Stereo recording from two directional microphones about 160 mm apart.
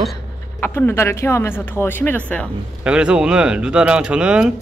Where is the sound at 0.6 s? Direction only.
15° left (ahead or behind).